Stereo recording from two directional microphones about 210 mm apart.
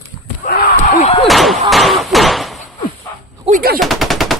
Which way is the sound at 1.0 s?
30° left (ahead or behind).